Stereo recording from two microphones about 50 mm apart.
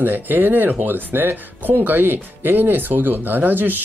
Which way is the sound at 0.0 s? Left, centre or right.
Right.